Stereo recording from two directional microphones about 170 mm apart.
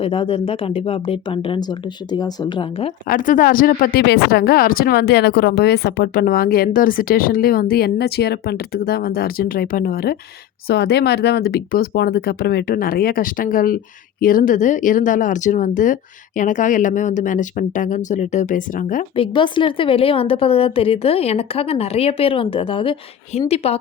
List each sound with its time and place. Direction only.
0.0 s a woman's voice: 30° left (ahead or behind)
3.1 s speech: 50° left (ahead or behind)
10.7 s speech: 70° left (ahead or behind); by 19.0 s 50° left (ahead or behind)
19.1 s a woman's voice: 30° left (ahead or behind)